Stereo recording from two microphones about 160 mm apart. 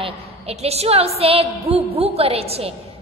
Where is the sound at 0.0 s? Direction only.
40° right (ahead or behind).